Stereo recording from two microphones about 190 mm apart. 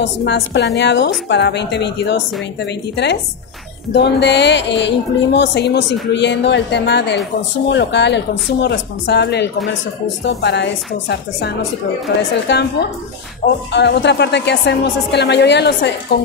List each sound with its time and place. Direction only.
0.0 s a woman's voice: 65° left (ahead or behind)
13.7 s a woman's voice: 65° left (ahead or behind)